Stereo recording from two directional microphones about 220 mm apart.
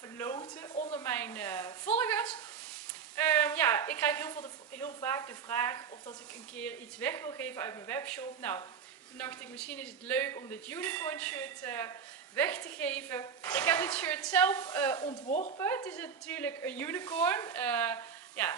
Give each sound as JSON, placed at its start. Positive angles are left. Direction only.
{"t": 0.2, "sound": "a woman's voice", "side_deg": 10}
{"t": 15.2, "sound": "speech", "side_deg": 35}
{"t": 15.5, "sound": "a woman's voice", "side_deg": 15}